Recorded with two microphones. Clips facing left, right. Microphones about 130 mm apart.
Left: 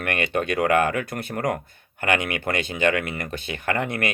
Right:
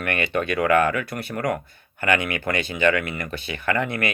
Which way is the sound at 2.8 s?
50° left (ahead or behind).